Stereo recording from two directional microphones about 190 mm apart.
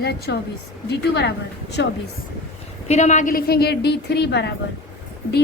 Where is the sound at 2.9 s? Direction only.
35° left (ahead or behind).